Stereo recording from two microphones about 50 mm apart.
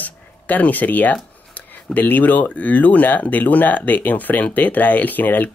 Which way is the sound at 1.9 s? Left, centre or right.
Left.